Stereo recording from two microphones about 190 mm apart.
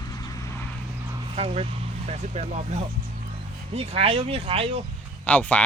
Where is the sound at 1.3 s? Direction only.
30° right (ahead or behind).